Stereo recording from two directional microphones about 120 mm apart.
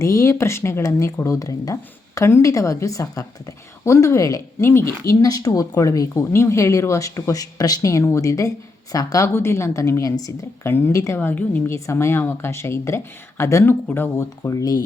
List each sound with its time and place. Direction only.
0.0 s speech: 25° left (ahead or behind)